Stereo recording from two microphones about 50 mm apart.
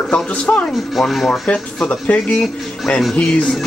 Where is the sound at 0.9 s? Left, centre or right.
Centre.